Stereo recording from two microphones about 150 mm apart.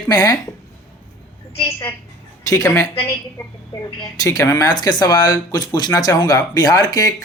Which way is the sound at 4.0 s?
25° left (ahead or behind).